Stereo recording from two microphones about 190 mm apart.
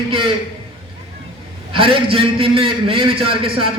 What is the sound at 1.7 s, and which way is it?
A man's voice, 30° right (ahead or behind).